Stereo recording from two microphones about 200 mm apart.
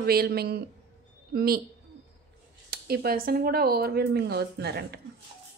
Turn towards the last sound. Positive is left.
turn(degrees=-55)  # may be behind; listen again after turning